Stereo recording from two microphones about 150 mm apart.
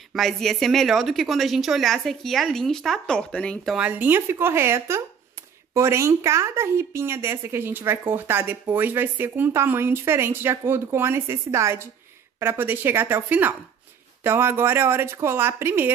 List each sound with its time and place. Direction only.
0.1 s a woman's voice: centre (ahead or behind)
3.7 s speech: 10° right (ahead or behind)